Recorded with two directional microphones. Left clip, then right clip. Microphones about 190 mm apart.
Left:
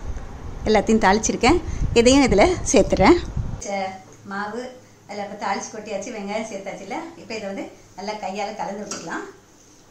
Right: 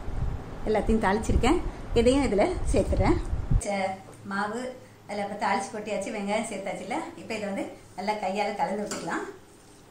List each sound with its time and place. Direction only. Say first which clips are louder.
0.7 s a woman's voice: left 8 dB; 45° left (ahead or behind)
3.5 s a woman's voice: left 2 dB; centre (ahead or behind)